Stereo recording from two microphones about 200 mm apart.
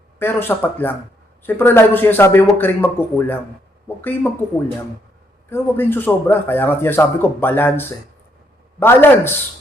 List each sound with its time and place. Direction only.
0.2 s a man's voice: 10° left (ahead or behind)
5.5 s a man's voice: 10° left (ahead or behind)